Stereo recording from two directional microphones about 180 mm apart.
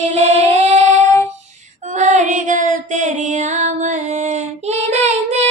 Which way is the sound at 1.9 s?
45° right (ahead or behind).